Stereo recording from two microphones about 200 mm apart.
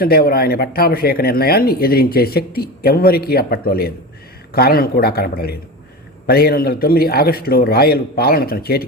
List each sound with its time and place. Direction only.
0.0 s speech: 50° left (ahead or behind)